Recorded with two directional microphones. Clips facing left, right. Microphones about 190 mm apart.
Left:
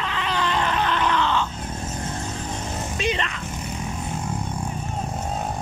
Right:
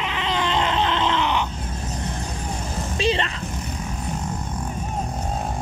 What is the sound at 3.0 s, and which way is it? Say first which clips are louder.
Speech: right 4 dB; 30° right (ahead or behind).